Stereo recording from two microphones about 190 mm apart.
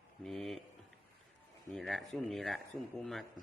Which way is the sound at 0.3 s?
Centre (ahead or behind).